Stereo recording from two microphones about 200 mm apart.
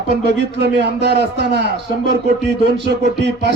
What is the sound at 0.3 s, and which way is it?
Speech, 55° right (ahead or behind).